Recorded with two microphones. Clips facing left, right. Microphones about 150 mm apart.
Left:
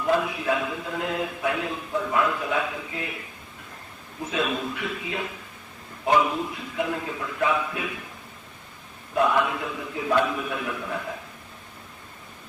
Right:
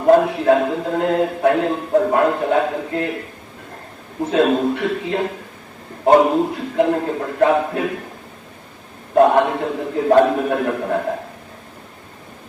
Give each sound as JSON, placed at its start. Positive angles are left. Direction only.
{"t": 0.0, "sound": "speech", "side_deg": -50}
{"t": 4.5, "sound": "a man's voice", "side_deg": -50}
{"t": 9.1, "sound": "speech", "side_deg": -45}